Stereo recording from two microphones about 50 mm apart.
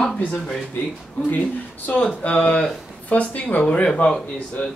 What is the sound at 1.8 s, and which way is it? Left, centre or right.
Speech, left.